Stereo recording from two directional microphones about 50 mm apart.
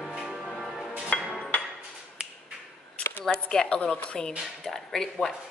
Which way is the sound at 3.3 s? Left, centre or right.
Centre.